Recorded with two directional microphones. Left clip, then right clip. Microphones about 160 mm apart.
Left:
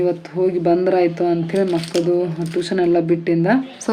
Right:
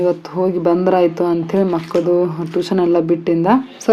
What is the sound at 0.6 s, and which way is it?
Speech, 60° right (ahead or behind).